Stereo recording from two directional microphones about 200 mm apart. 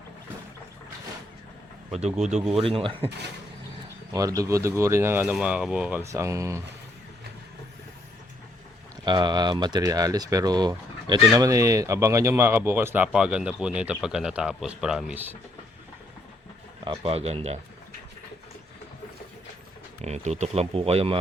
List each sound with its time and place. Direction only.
2.3 s speech: 30° right (ahead or behind)
4.1 s speech: 15° right (ahead or behind)
9.0 s speech: 20° right (ahead or behind)
16.8 s speech: 25° right (ahead or behind)
20.0 s speech: 35° right (ahead or behind)